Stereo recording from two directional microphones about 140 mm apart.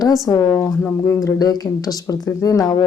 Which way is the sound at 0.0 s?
25° left (ahead or behind).